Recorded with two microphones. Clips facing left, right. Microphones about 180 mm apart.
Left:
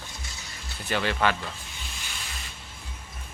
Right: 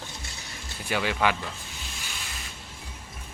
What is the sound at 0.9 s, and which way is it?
Speech, 10° right (ahead or behind).